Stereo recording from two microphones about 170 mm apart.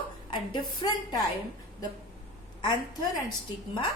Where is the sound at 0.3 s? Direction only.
25° left (ahead or behind).